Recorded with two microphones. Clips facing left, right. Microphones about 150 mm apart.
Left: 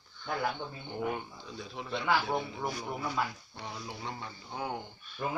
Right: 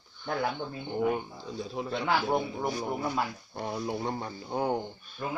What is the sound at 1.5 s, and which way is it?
A man's voice, 35° right (ahead or behind).